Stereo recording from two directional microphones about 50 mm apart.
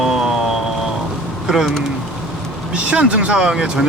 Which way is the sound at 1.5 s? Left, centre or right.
Centre.